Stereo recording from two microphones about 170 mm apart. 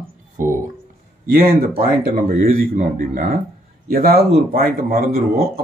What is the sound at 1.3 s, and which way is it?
Speech, 60° right (ahead or behind).